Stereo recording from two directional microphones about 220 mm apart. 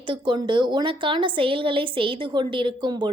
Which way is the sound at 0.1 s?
20° right (ahead or behind).